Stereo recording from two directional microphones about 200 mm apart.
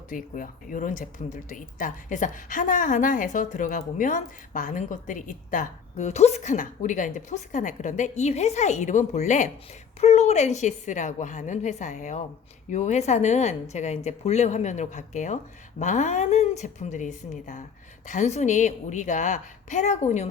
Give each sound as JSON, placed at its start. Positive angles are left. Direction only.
{"t": 0.1, "sound": "speech", "side_deg": 40}